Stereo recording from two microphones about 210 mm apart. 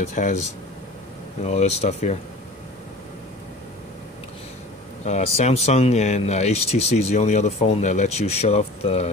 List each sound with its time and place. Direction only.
0.1 s speech: 35° left (ahead or behind)
5.0 s speech: 30° left (ahead or behind)